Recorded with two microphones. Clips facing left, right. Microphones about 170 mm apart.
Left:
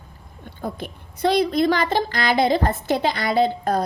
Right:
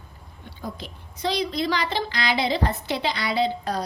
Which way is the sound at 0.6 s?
55° left (ahead or behind).